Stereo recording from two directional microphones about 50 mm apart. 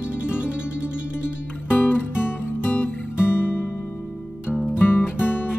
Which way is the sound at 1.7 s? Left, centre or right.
Left.